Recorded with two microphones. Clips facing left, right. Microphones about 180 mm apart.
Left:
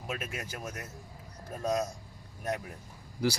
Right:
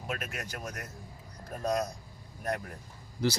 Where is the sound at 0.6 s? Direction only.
25° left (ahead or behind).